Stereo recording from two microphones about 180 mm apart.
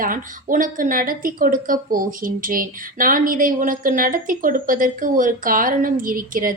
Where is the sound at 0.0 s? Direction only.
50° right (ahead or behind).